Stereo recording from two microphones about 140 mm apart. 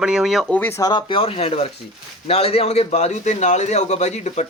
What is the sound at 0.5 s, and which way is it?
Speech, 15° left (ahead or behind).